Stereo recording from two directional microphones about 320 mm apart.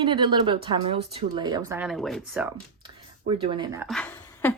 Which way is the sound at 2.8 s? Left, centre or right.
Centre.